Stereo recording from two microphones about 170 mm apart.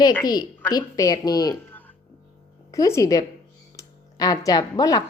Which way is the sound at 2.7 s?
20° left (ahead or behind).